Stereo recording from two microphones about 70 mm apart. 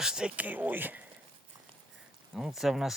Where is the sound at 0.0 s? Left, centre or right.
Centre.